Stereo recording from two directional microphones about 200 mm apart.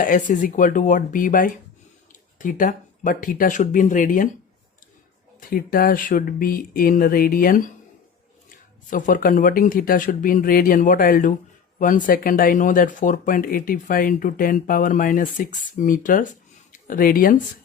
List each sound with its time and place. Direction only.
0.0 s speech: 40° left (ahead or behind)
5.4 s speech: 45° left (ahead or behind)